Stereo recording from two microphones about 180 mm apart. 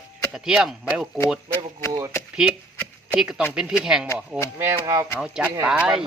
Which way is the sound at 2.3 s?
5° right (ahead or behind).